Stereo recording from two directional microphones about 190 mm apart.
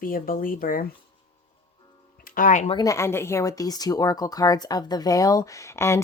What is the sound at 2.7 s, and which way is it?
Speech, 15° left (ahead or behind).